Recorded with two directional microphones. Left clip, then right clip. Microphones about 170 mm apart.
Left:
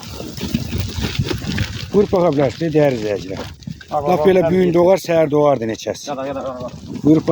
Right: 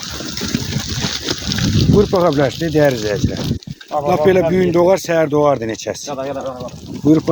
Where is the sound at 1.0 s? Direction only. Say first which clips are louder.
Right 4 dB; 60° left (ahead or behind).